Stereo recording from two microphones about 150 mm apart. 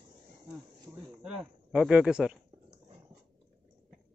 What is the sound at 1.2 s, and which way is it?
Speech, 5° right (ahead or behind).